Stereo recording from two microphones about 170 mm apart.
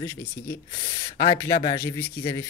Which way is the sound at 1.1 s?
20° left (ahead or behind).